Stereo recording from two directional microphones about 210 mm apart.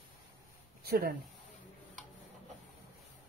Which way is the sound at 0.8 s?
45° right (ahead or behind).